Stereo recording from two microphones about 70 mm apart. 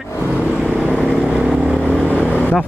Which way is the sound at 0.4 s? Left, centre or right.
Centre.